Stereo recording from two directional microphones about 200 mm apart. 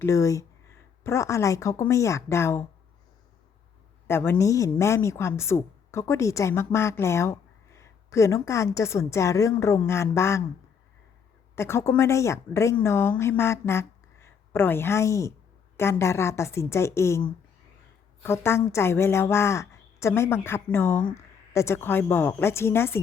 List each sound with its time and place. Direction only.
0.0 s a woman's voice: 15° left (ahead or behind)
4.0 s a woman's voice: 10° left (ahead or behind)
11.5 s a woman's voice: 15° left (ahead or behind)